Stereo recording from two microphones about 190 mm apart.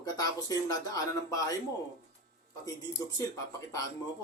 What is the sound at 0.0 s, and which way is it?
Speech, 20° left (ahead or behind).